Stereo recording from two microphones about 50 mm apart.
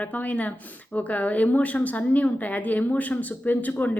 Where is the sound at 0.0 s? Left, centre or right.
Left.